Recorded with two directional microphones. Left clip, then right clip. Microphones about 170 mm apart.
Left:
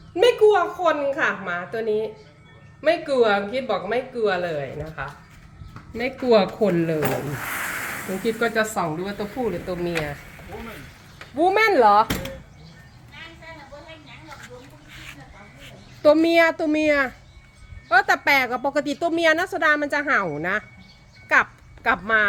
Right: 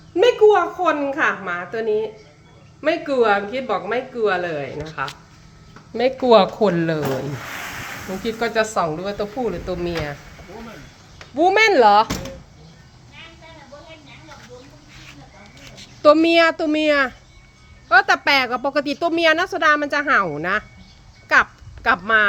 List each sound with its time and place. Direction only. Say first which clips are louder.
0.2 s speech: right 3 dB; 10° right (ahead or behind)
5.9 s speech: right 5 dB; 30° right (ahead or behind)
8.2 s speech: right 2 dB; 15° right (ahead or behind)
11.3 s speech: right 3 dB; 10° right (ahead or behind)
16.0 s a woman's voice: right 3 dB; 5° right (ahead or behind)
21.8 s speech: right 3 dB; 5° right (ahead or behind)